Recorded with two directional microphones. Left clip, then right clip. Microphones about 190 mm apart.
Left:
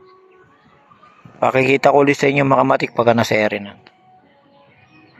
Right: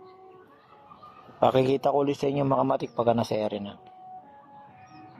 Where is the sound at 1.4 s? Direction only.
Centre (ahead or behind).